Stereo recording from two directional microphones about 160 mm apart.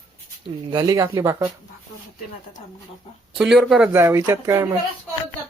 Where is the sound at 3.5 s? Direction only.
5° right (ahead or behind).